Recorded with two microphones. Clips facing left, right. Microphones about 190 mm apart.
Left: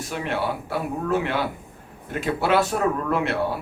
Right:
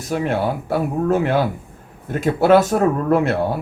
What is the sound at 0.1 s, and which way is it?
Speech, 45° right (ahead or behind).